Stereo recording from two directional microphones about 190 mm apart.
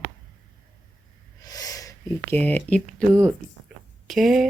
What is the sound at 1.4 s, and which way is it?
Speech, 20° left (ahead or behind).